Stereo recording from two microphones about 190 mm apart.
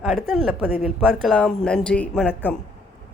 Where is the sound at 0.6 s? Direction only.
10° right (ahead or behind); by 2.6 s 5° left (ahead or behind).